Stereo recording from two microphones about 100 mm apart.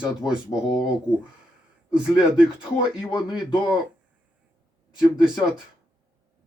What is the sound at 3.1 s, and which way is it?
Speech, 50° left (ahead or behind).